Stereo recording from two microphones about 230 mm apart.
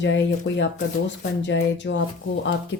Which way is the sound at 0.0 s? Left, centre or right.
Left.